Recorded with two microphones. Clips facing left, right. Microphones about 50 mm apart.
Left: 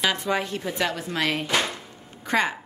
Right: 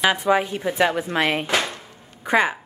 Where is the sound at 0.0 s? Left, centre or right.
Centre.